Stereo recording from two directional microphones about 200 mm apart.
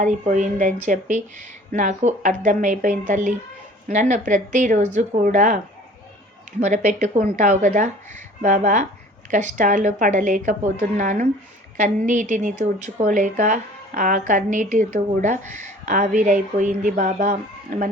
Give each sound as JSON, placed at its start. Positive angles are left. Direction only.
{"t": 0.0, "sound": "a woman's voice", "side_deg": -40}
{"t": 6.6, "sound": "a woman's voice", "side_deg": -35}